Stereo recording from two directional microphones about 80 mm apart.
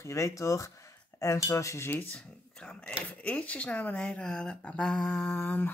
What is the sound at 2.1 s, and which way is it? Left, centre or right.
Speech, centre.